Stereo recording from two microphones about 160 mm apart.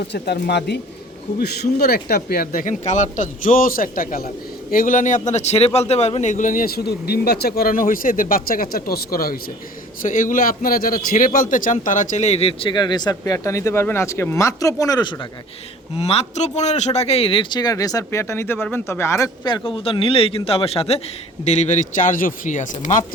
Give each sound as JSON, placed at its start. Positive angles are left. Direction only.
{"t": 0.0, "sound": "speech", "side_deg": 90}
{"t": 1.4, "sound": "a man's voice", "side_deg": 75}
{"t": 10.1, "sound": "a man's voice", "side_deg": 55}
{"t": 16.0, "sound": "a man's voice", "side_deg": 40}